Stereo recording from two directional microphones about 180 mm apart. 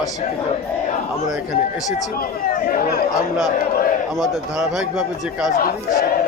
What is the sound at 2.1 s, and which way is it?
Speech, 50° left (ahead or behind).